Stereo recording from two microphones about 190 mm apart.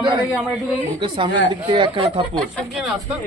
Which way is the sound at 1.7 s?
25° right (ahead or behind).